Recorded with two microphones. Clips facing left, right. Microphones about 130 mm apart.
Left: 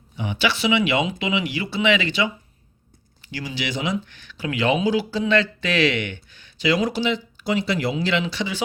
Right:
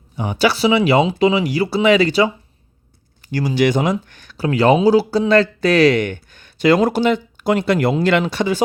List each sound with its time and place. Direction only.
0.2 s speech: 40° right (ahead or behind)